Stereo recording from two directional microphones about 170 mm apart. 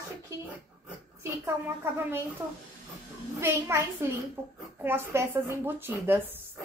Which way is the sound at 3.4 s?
15° right (ahead or behind).